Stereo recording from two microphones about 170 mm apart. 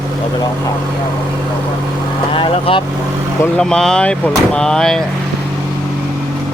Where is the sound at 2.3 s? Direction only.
30° left (ahead or behind).